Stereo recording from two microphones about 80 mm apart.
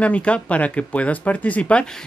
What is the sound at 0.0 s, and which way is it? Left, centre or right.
Speech, centre.